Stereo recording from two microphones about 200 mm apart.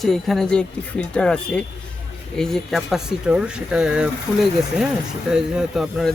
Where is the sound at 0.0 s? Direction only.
Centre (ahead or behind).